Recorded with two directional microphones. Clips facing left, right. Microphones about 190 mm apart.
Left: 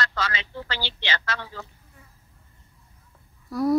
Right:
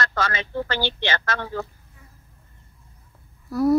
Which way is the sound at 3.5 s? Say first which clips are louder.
Right 3 dB; 5° right (ahead or behind).